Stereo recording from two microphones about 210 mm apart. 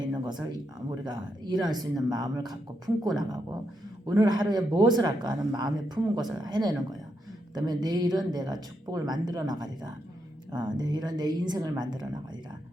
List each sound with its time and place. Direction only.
0.1 s speech: 20° right (ahead or behind)